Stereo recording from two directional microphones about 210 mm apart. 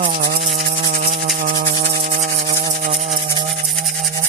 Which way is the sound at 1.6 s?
30° right (ahead or behind).